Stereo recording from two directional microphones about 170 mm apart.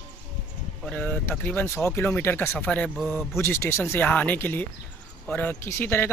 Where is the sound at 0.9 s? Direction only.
10° left (ahead or behind).